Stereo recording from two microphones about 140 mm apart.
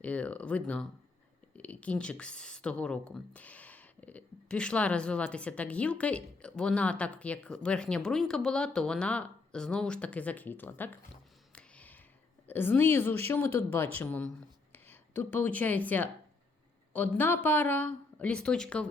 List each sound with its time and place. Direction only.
0.0 s speech: 10° left (ahead or behind)
11.5 s a sound: 10° left (ahead or behind)
12.5 s speech: 15° left (ahead or behind)
17.2 s speech: 15° left (ahead or behind)